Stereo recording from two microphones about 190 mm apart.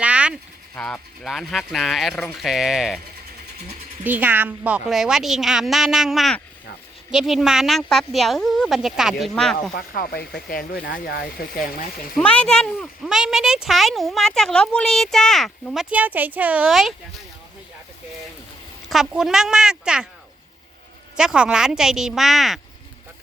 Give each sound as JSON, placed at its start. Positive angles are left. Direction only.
{"t": 0.0, "sound": "a sound", "side_deg": -5}
{"t": 0.8, "sound": "speech", "side_deg": 5}
{"t": 4.0, "sound": "speech", "side_deg": -10}
{"t": 9.7, "sound": "speech", "side_deg": 55}
{"t": 12.1, "sound": "speech", "side_deg": 5}
{"t": 18.9, "sound": "speech", "side_deg": 0}
{"t": 21.2, "sound": "speech", "side_deg": -5}